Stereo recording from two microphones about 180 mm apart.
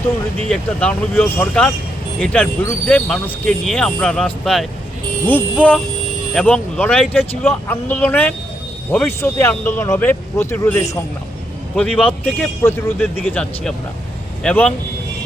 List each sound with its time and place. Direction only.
0.4 s speech: 5° left (ahead or behind)